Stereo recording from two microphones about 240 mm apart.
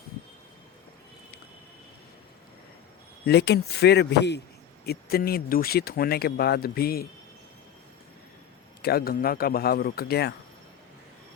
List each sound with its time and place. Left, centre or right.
3.2 s speech: left
8.8 s speech: left